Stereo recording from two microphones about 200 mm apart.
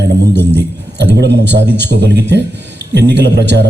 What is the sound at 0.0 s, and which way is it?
A man's voice, 60° right (ahead or behind).